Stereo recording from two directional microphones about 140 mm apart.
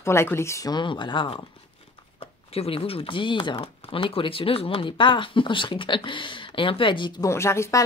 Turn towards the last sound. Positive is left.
turn(degrees=20)  # may be behind; listen again after turning